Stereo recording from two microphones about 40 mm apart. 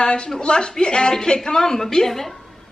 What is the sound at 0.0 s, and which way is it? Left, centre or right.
Speech, left.